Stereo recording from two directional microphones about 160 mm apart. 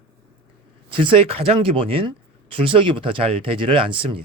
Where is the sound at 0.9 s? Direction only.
35° right (ahead or behind).